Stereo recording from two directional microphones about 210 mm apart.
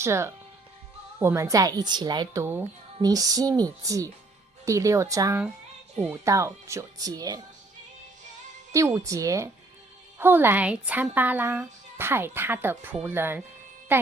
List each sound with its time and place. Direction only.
0.0 s speech: 15° right (ahead or behind)
8.7 s speech: 15° right (ahead or behind)